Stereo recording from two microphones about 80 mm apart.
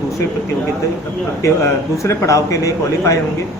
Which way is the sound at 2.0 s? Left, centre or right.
Left.